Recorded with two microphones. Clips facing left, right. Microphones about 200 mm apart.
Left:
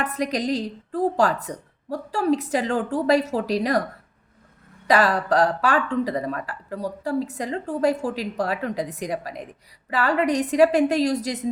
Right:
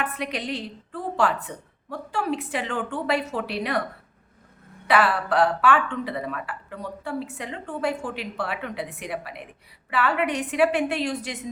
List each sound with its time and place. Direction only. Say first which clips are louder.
0.0 s speech: left 5 dB; 40° left (ahead or behind)
4.9 s speech: left 2 dB; 40° left (ahead or behind)